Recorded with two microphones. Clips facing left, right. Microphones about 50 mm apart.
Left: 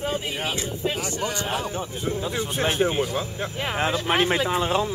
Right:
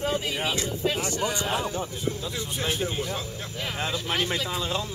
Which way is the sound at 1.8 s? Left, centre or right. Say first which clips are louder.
Left 3 dB; left.